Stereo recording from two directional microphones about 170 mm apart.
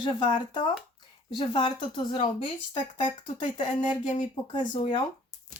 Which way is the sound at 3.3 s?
25° left (ahead or behind).